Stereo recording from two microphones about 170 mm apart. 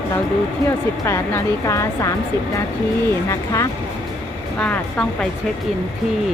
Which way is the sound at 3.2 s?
20° left (ahead or behind).